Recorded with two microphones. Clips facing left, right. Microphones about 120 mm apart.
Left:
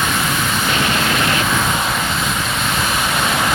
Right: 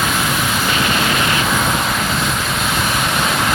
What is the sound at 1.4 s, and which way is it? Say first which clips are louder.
Vehicle: right 1 dB; centre (ahead or behind).